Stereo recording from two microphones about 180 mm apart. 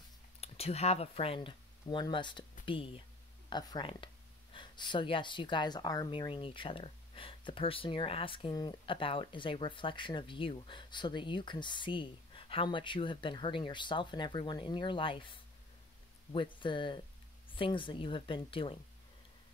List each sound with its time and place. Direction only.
0.4 s speech: 35° left (ahead or behind)